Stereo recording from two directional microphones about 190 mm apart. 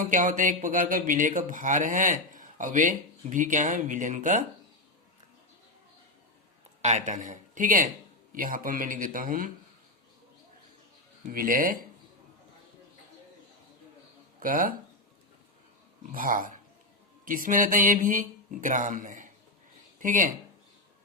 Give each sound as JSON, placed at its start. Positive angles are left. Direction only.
{"t": 0.0, "sound": "a man's voice", "side_deg": -45}
{"t": 6.8, "sound": "a man's voice", "side_deg": -40}
{"t": 11.3, "sound": "a man's voice", "side_deg": -45}
{"t": 14.3, "sound": "speech", "side_deg": -45}
{"t": 16.1, "sound": "a man's voice", "side_deg": -45}